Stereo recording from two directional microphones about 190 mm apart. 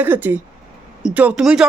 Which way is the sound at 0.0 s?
10° right (ahead or behind).